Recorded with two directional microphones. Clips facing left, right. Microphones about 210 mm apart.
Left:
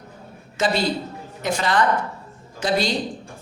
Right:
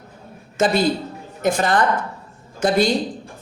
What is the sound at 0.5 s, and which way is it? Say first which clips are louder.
A man's voice: right 4 dB; 50° right (ahead or behind).